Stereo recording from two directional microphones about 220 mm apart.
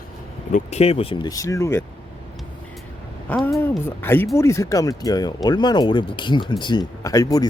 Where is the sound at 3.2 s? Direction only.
5° left (ahead or behind).